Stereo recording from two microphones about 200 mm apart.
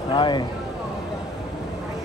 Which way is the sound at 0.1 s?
25° left (ahead or behind).